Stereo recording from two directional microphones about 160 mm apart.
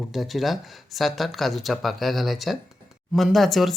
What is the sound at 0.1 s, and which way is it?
Speech, centre (ahead or behind).